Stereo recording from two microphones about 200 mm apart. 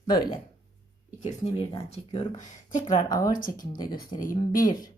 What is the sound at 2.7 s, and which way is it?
Speech, 40° left (ahead or behind).